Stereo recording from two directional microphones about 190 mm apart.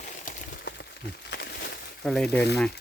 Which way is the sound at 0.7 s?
65° left (ahead or behind).